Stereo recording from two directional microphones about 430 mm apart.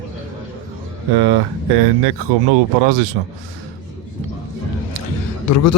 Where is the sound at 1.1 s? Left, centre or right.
Right.